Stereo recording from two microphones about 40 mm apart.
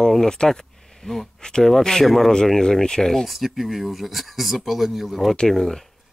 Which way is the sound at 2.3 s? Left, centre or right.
Centre.